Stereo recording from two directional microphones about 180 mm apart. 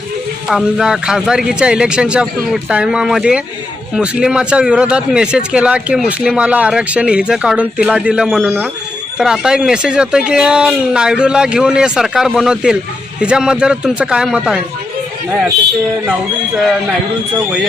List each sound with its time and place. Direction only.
0.4 s a man's voice: centre (ahead or behind)